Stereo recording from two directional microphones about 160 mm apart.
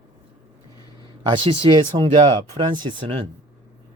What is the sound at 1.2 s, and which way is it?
Speech, 30° right (ahead or behind).